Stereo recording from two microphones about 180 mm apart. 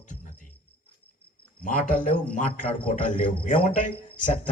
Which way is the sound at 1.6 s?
50° left (ahead or behind).